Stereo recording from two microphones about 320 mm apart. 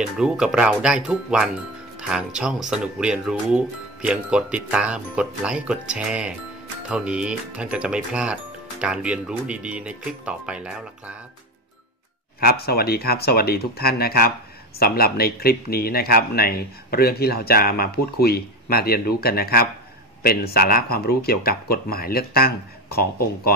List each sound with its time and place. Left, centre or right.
0.0 s speech: centre
12.4 s speech: left